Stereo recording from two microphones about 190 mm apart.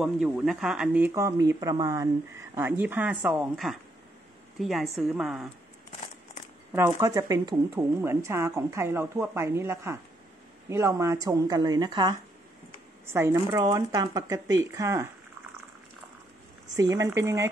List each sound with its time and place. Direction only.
0.0 s speech: centre (ahead or behind); by 2.0 s 20° right (ahead or behind)
2.8 s a woman's voice: 10° right (ahead or behind)
6.7 s a woman's voice: 15° right (ahead or behind)
16.7 s speech: 15° right (ahead or behind)